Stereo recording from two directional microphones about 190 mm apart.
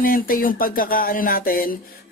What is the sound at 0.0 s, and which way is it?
Speech, 50° left (ahead or behind).